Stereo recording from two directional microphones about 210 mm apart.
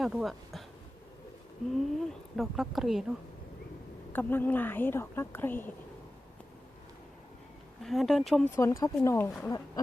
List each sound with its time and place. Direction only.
0.0 s speech: centre (ahead or behind)
1.7 s speech: centre (ahead or behind)
4.1 s a woman's voice: 10° left (ahead or behind)
7.8 s speech: centre (ahead or behind)
8.5 s a woman's voice: 15° left (ahead or behind)